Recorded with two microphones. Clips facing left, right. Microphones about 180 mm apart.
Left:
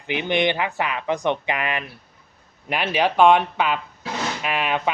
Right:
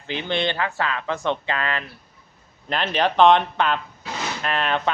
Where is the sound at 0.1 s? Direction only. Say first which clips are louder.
Left 3 dB; 15° left (ahead or behind).